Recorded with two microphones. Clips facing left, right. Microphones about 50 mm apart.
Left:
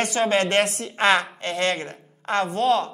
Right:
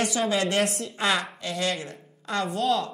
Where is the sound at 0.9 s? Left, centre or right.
Left.